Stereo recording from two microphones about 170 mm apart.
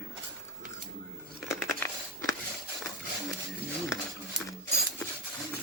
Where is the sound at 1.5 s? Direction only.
10° left (ahead or behind).